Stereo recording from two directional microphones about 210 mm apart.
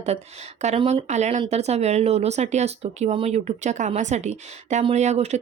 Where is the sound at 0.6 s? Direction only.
30° right (ahead or behind).